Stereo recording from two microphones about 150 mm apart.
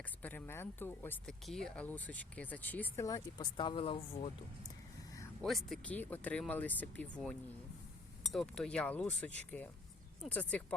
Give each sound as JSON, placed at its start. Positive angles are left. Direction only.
{"t": 0.2, "sound": "speech", "side_deg": 10}
{"t": 1.5, "sound": "speech", "side_deg": 5}
{"t": 5.4, "sound": "speech", "side_deg": 0}
{"t": 8.2, "sound": "speech", "side_deg": 0}